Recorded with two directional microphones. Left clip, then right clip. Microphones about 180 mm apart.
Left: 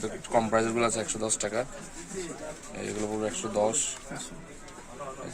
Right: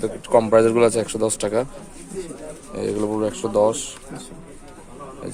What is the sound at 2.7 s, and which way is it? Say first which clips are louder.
A man's voice: right 10 dB; 45° right (ahead or behind).